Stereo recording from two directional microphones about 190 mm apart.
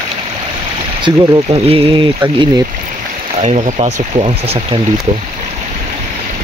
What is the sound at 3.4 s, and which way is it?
Speech, 35° right (ahead or behind).